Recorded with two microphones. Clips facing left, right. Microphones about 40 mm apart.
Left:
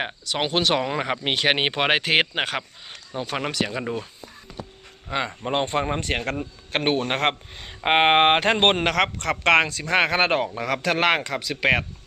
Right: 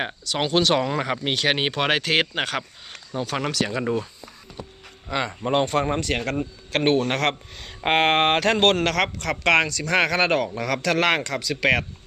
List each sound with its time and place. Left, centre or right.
0.3 s speech: centre
3.7 s speech: centre
5.1 s speech: centre; by 11.8 s left